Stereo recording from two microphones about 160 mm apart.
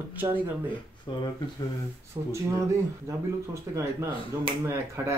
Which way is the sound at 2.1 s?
30° right (ahead or behind).